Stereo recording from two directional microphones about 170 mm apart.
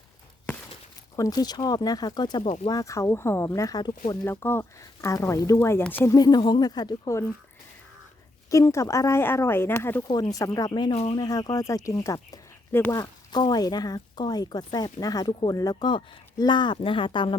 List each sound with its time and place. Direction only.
1.1 s speech: 20° left (ahead or behind)
4.3 s speech: 15° left (ahead or behind)
6.1 s speech: 25° left (ahead or behind)
8.4 s speech: 20° left (ahead or behind)
10.1 s speech: 25° left (ahead or behind)
10.9 s speech: 35° left (ahead or behind)
11.2 s speech: 20° left (ahead or behind)